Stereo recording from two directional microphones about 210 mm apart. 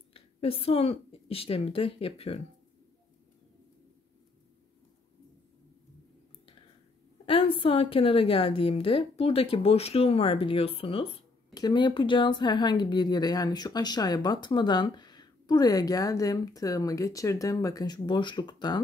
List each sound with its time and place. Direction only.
0.1 s a woman's voice: 25° left (ahead or behind)
7.2 s a woman's voice: 25° left (ahead or behind)